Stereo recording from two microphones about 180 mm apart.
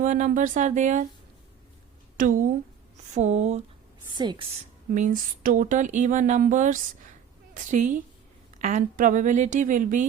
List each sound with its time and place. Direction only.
0.0 s speech: 45° right (ahead or behind)
2.1 s speech: 50° right (ahead or behind)
4.2 s a woman's voice: 25° right (ahead or behind)
4.9 s a woman's voice: 45° right (ahead or behind)